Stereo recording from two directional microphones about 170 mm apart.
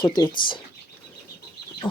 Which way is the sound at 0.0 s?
25° left (ahead or behind).